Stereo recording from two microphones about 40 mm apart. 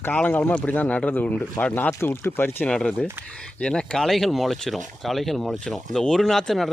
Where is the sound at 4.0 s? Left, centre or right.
Centre.